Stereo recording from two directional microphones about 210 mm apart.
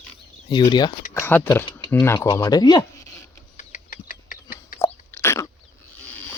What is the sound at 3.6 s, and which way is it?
Chicken, 40° left (ahead or behind).